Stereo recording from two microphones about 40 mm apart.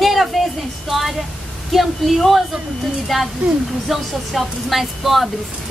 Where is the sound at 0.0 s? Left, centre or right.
Centre.